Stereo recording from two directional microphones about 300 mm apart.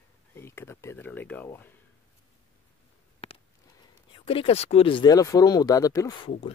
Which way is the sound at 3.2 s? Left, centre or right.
Centre.